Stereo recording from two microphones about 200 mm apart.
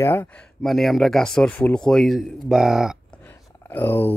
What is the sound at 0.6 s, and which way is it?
Speech, centre (ahead or behind).